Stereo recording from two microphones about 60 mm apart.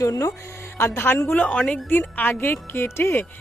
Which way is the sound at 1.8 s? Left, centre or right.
Left.